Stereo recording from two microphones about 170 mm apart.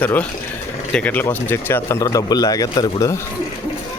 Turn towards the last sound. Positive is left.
turn(degrees=20)  # may be behind; listen again after turning